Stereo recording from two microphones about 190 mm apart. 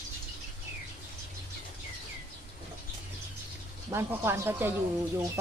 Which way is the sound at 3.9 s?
10° right (ahead or behind).